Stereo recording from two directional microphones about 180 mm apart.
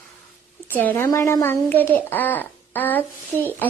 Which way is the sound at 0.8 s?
10° left (ahead or behind).